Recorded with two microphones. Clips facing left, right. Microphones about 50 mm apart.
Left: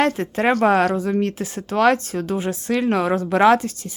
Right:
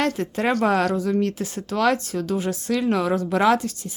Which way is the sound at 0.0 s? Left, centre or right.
Left.